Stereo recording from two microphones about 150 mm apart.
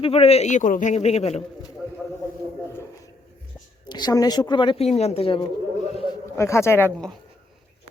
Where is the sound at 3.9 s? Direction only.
25° left (ahead or behind).